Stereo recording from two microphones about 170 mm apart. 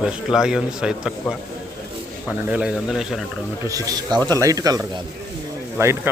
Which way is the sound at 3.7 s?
20° right (ahead or behind).